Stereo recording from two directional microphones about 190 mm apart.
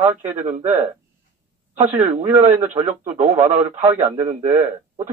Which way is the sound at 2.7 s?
35° right (ahead or behind).